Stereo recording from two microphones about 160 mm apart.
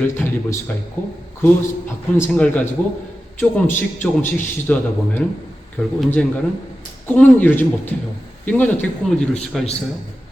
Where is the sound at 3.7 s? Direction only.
15° left (ahead or behind).